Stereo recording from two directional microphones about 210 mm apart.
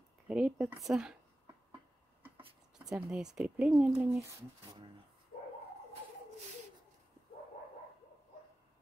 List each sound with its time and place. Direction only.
0.3 s speech: 5° right (ahead or behind)
2.8 s speech: centre (ahead or behind)
5.3 s dog: 25° left (ahead or behind)